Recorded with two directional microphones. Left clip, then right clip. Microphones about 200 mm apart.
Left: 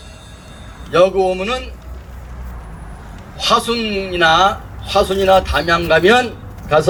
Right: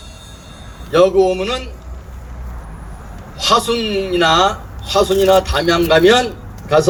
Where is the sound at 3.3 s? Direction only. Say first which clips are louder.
Right 1 dB; 20° right (ahead or behind).